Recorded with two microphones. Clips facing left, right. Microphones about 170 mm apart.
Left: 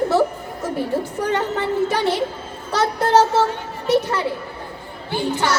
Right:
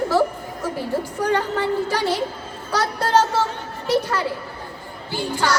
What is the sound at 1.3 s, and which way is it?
Speech, 25° left (ahead or behind).